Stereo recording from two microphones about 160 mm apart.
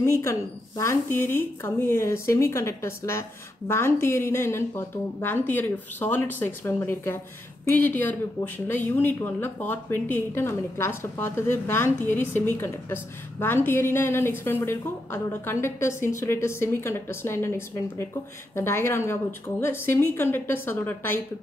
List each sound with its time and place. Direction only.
0.0 s a woman's voice: 15° left (ahead or behind)